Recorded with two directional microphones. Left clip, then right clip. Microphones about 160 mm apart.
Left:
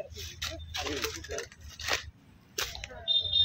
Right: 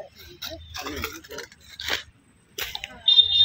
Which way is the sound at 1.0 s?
35° right (ahead or behind).